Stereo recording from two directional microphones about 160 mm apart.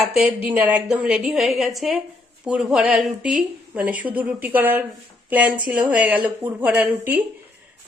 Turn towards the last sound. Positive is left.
turn(degrees=-10)  # may be behind; listen again after turning